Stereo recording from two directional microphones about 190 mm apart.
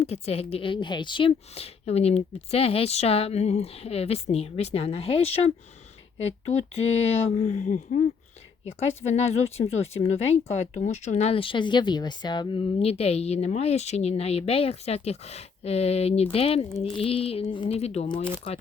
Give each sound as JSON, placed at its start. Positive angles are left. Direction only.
{"t": 0.0, "sound": "speech", "side_deg": 35}
{"t": 9.0, "sound": "speech", "side_deg": 35}